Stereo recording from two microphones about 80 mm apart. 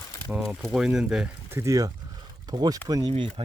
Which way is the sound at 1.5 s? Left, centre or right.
Right.